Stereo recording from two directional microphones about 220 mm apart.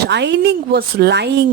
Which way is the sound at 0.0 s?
50° right (ahead or behind).